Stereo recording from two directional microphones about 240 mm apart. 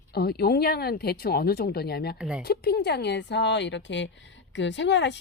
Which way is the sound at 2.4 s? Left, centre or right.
Left.